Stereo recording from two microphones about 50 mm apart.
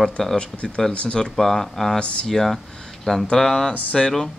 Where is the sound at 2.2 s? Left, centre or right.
Centre.